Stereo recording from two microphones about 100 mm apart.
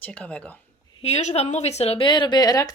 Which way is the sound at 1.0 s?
90° left.